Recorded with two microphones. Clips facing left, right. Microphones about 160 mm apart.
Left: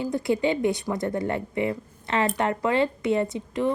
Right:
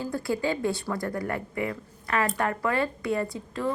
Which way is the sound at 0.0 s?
20° left (ahead or behind).